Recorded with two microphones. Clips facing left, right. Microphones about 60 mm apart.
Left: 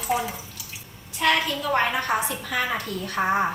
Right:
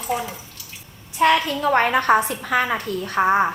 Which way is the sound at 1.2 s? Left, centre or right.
Right.